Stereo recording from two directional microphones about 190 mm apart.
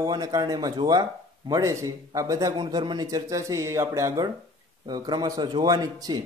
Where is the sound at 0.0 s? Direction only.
20° right (ahead or behind).